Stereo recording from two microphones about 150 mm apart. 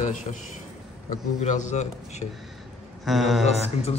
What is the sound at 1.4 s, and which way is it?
Speech, 55° left (ahead or behind).